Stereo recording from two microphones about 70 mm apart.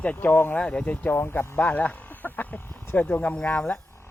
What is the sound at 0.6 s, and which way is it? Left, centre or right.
Speech, centre.